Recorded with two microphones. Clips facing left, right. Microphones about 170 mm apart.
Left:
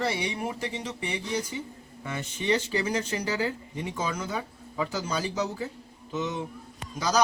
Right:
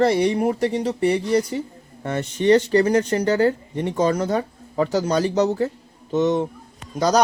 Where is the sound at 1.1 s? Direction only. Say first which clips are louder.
Right 10 dB; 70° right (ahead or behind).